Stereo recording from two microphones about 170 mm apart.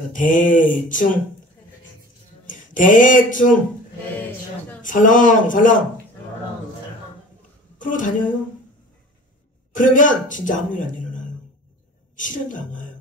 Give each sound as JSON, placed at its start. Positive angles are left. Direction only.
{"t": 0.1, "sound": "speech", "side_deg": 50}
{"t": 2.4, "sound": "speech", "side_deg": 50}
{"t": 4.8, "sound": "speech", "side_deg": 50}
{"t": 7.8, "sound": "speech", "side_deg": 50}
{"t": 9.8, "sound": "speech", "side_deg": 50}